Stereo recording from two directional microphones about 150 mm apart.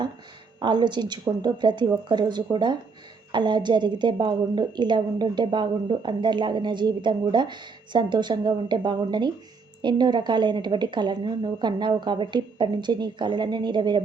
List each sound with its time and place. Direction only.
0.6 s a woman's voice: 30° right (ahead or behind)